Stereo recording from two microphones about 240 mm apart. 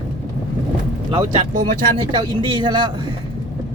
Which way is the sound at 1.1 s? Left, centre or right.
Centre.